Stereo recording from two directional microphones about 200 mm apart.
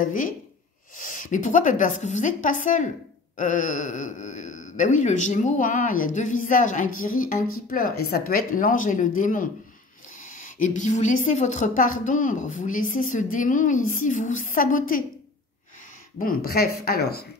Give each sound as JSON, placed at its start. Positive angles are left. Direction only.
{"t": 0.0, "sound": "a man's voice", "side_deg": 45}
{"t": 16.2, "sound": "speech", "side_deg": 50}